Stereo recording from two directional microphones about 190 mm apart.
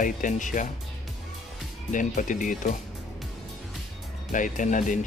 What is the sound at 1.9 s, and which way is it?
Speech, 40° left (ahead or behind).